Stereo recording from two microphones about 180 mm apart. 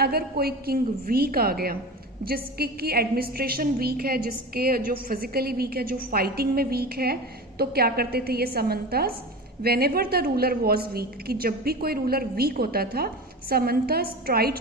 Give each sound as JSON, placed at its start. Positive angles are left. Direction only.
{"t": 0.0, "sound": "a woman's voice", "side_deg": -60}